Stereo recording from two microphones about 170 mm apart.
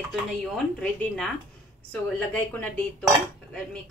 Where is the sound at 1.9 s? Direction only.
10° left (ahead or behind).